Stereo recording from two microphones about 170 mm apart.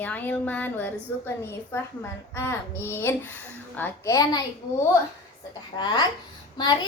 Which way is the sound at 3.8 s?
20° left (ahead or behind).